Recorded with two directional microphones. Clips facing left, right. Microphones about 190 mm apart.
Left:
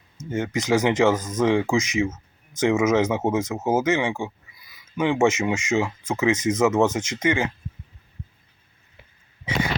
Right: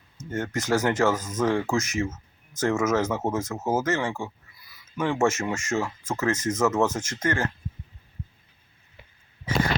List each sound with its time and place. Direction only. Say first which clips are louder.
0.2 s speech: left 3 dB; 10° left (ahead or behind)